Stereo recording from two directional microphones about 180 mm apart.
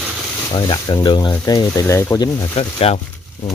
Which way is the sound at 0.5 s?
25° left (ahead or behind).